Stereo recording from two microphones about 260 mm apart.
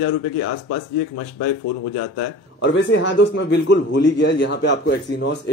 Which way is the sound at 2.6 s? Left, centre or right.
Left.